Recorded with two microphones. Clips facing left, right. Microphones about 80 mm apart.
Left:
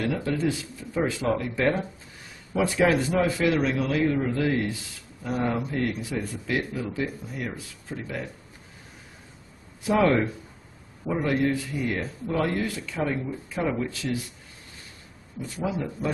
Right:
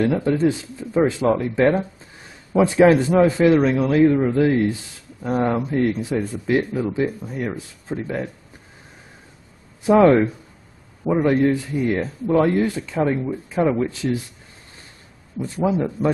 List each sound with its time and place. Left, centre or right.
0.0 s speech: right
2.8 s speech: right
9.8 s a man's voice: right
11.2 s speech: right
15.4 s a man's voice: right